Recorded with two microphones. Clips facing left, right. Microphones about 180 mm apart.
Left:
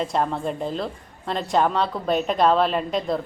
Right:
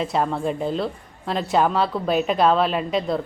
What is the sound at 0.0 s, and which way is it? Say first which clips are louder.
A woman's voice: right 1 dB; centre (ahead or behind).